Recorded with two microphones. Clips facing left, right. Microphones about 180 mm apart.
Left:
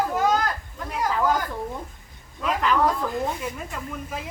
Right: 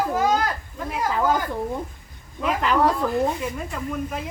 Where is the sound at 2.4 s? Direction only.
5° right (ahead or behind).